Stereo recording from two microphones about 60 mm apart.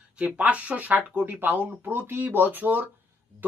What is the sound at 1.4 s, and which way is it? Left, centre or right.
Speech, right.